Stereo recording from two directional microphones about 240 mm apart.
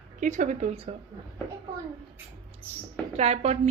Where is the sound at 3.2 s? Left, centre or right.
Right.